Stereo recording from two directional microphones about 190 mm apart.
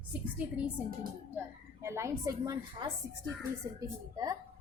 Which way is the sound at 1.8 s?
15° right (ahead or behind).